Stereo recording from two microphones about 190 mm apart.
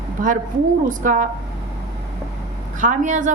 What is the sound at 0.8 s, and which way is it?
Speech, 45° right (ahead or behind).